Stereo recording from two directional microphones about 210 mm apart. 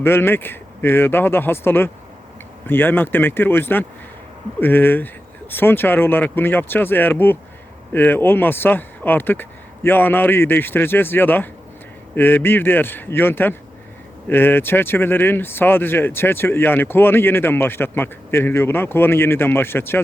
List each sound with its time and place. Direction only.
0.0 s speech: 10° left (ahead or behind)